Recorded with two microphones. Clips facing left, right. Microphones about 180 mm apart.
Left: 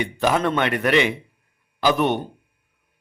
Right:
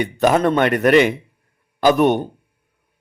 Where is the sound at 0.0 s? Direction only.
45° right (ahead or behind).